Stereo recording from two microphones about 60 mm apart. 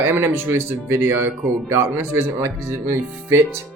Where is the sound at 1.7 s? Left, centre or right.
Right.